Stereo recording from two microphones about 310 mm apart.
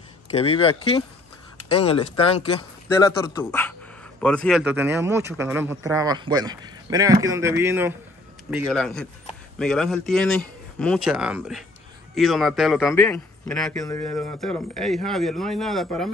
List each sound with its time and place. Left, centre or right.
0.3 s a man's voice: centre